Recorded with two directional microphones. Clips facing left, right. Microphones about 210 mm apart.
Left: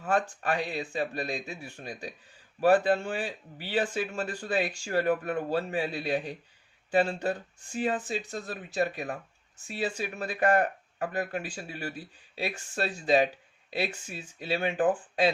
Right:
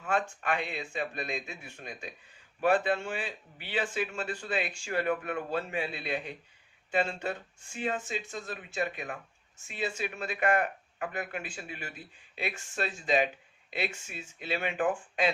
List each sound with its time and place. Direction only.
0.0 s speech: 35° left (ahead or behind)